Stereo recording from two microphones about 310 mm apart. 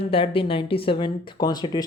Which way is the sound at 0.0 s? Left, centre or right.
Centre.